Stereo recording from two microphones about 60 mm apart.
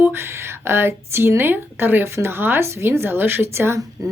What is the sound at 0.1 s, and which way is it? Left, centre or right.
Speech, right.